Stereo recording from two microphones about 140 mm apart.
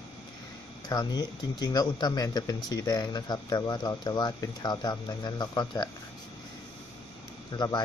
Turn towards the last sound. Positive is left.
turn(degrees=30)  # may be behind; listen again after turning